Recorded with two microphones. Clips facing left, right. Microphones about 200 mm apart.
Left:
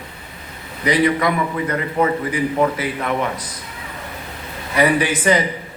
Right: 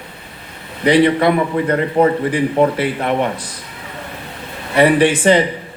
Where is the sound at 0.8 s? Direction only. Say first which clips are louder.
Right 5 dB; 30° right (ahead or behind).